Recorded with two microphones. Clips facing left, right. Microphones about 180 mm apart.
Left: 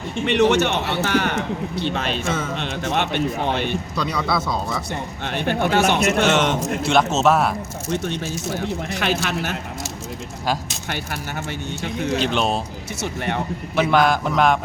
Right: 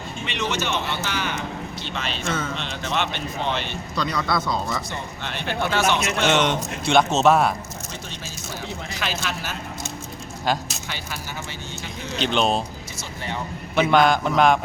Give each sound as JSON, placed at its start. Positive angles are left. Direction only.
{"t": 0.3, "sound": "a man's voice", "side_deg": 65}
{"t": 3.9, "sound": "speech", "side_deg": 5}
{"t": 4.9, "sound": "a man's voice", "side_deg": 50}
{"t": 6.2, "sound": "speech", "side_deg": 5}
{"t": 7.9, "sound": "a man's voice", "side_deg": 65}
{"t": 10.4, "sound": "speech", "side_deg": 5}
{"t": 10.8, "sound": "a man's voice", "side_deg": 55}
{"t": 12.2, "sound": "speech", "side_deg": 5}
{"t": 13.0, "sound": "a man's voice", "side_deg": 65}
{"t": 13.7, "sound": "speech", "side_deg": 0}